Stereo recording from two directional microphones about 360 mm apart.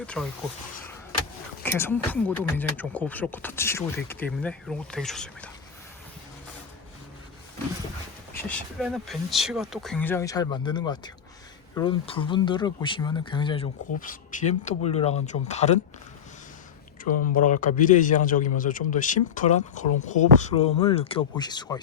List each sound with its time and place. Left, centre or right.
0.0 s speech: centre
1.6 s speech: centre
8.3 s speech: centre
17.0 s a man's voice: left